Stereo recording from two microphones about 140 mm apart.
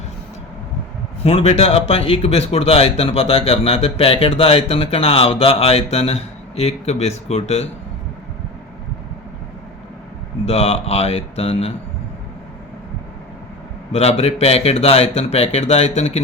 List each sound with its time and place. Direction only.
1.2 s speech: 45° left (ahead or behind)
10.4 s speech: 45° left (ahead or behind)
13.9 s speech: 50° left (ahead or behind)